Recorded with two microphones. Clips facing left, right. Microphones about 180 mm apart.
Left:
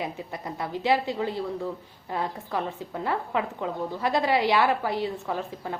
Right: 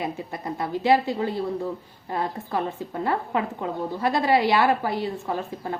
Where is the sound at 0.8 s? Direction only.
45° right (ahead or behind).